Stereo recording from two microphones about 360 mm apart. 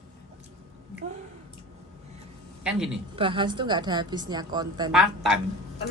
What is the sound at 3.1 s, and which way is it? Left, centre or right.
A woman's voice, centre.